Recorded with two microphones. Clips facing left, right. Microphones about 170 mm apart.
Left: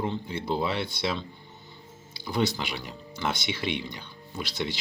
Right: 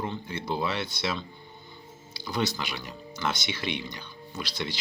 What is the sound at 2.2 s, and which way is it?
Speech, 25° left (ahead or behind).